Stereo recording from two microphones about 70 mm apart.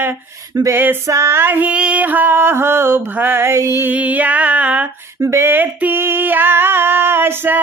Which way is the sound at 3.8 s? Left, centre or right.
Right.